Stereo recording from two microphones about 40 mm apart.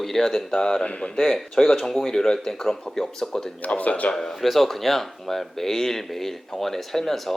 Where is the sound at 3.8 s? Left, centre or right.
Left.